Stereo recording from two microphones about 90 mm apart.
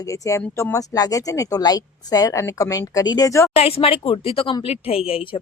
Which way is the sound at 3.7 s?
90° left.